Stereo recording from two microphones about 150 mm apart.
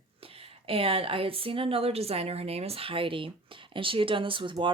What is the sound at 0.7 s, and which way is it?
Speech, 40° right (ahead or behind).